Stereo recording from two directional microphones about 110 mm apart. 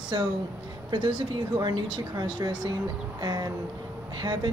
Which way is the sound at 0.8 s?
45° right (ahead or behind).